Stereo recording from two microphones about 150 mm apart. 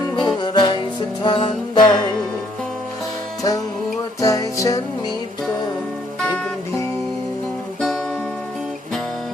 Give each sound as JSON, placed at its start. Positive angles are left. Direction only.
{"t": 0.2, "sound": "music", "side_deg": 30}
{"t": 4.2, "sound": "music", "side_deg": 20}
{"t": 7.8, "sound": "music", "side_deg": 5}